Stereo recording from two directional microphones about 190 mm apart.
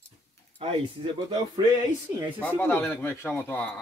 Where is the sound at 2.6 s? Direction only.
10° left (ahead or behind).